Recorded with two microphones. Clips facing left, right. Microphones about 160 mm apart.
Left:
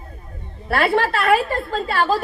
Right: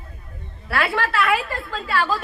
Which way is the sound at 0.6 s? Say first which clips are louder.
Left 5 dB; 50° left (ahead or behind).